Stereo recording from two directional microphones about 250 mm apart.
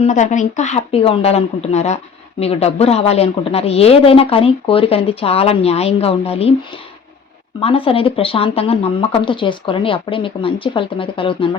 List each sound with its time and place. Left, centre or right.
0.0 s a woman's voice: left
7.6 s a woman's voice: left